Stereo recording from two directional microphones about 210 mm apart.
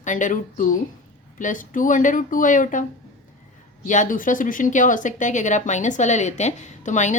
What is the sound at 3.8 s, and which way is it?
A woman's voice, 35° left (ahead or behind).